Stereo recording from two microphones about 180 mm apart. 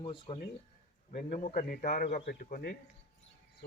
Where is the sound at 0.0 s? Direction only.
30° left (ahead or behind).